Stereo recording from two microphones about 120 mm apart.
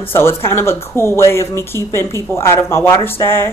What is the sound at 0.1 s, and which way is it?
Speech, 20° left (ahead or behind).